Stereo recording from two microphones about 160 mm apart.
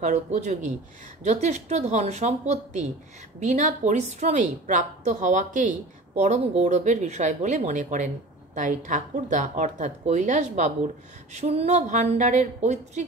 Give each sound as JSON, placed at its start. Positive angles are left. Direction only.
{"t": 0.0, "sound": "a woman's voice", "side_deg": -50}